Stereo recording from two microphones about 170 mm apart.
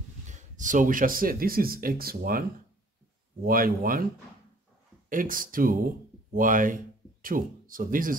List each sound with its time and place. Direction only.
0.3 s speech: 50° right (ahead or behind)
3.4 s speech: 55° right (ahead or behind)
5.1 s speech: 55° right (ahead or behind)